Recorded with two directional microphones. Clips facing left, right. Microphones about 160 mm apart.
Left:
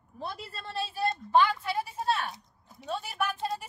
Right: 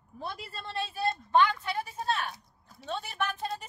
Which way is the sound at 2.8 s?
10° left (ahead or behind).